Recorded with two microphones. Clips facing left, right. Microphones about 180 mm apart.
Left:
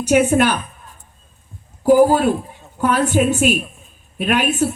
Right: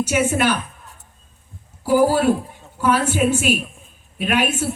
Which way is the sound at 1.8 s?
45° left (ahead or behind).